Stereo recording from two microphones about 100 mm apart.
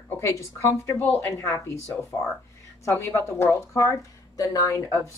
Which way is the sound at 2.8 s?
25° left (ahead or behind).